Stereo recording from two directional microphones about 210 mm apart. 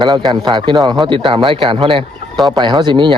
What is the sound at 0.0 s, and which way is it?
Speech, 20° right (ahead or behind).